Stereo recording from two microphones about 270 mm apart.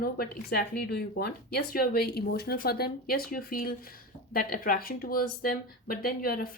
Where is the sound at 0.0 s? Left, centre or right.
Left.